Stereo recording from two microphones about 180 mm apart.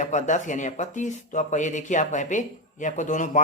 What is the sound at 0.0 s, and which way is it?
Speech, 40° left (ahead or behind).